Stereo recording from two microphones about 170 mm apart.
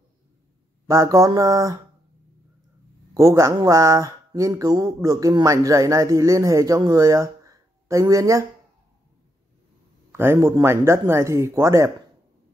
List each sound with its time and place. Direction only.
0.8 s speech: 20° right (ahead or behind)
3.2 s speech: 20° right (ahead or behind)
10.1 s speech: 15° right (ahead or behind)